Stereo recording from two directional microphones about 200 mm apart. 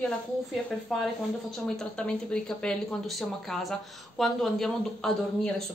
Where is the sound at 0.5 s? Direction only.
Centre (ahead or behind).